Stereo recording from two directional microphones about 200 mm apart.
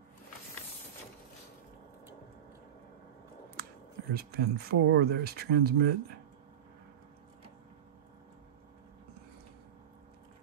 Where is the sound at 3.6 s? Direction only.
50° right (ahead or behind).